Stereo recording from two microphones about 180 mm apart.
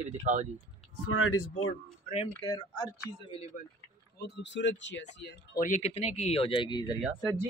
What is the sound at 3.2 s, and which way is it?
Speech, 35° left (ahead or behind).